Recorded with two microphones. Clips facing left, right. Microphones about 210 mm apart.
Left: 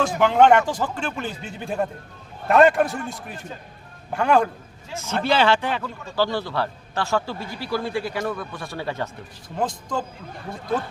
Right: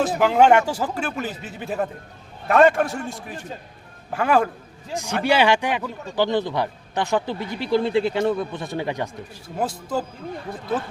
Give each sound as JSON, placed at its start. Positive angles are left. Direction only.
{"t": 0.2, "sound": "speech", "side_deg": -5}
{"t": 4.9, "sound": "a man's voice", "side_deg": -15}